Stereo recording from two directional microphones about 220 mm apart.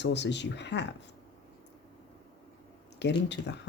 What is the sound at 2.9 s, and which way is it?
Speech, 50° left (ahead or behind).